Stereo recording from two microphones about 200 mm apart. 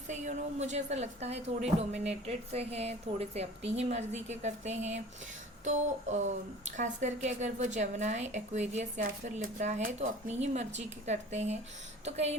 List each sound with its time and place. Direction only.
0.1 s speech: 35° right (ahead or behind)